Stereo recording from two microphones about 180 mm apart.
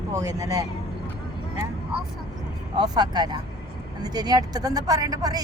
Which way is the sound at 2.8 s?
25° right (ahead or behind).